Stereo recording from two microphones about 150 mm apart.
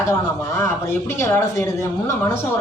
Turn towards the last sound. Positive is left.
turn(degrees=15)  # may be behind; listen again after turning